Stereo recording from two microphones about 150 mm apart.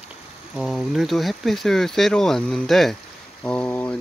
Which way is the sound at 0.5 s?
Centre (ahead or behind).